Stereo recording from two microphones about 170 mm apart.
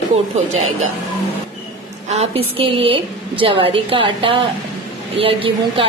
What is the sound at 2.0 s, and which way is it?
A woman's voice, 35° right (ahead or behind).